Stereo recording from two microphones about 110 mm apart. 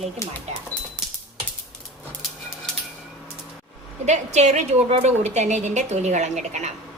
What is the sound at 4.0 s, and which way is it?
A woman's voice, 90° right.